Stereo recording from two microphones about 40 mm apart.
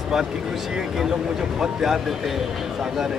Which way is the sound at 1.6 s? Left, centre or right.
Centre.